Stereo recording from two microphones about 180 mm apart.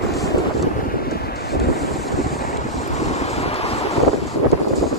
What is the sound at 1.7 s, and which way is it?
Waves, centre (ahead or behind).